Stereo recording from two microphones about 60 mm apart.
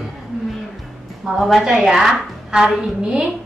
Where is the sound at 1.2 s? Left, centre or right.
Centre.